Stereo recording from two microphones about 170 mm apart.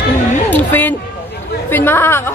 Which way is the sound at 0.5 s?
10° left (ahead or behind).